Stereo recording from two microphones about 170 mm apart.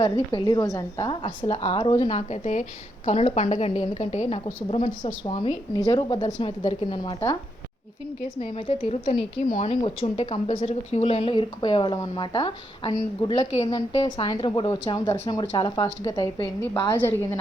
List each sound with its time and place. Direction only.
0.0 s a woman's voice: 25° left (ahead or behind)
8.4 s a woman's voice: 35° left (ahead or behind)